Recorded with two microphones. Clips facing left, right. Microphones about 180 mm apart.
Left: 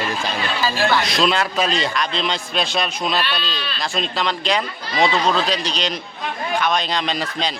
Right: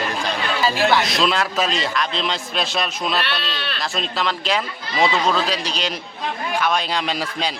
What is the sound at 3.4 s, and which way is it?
Speech, 65° right (ahead or behind).